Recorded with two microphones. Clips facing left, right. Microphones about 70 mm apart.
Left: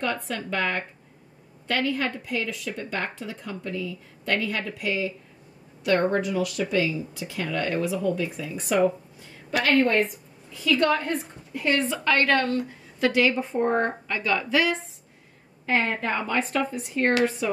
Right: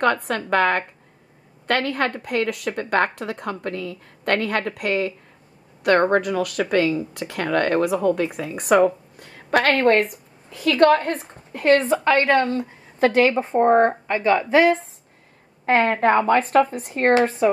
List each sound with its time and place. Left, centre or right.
0.0 s a woman's voice: right
11.8 s a woman's voice: right
13.0 s a woman's voice: right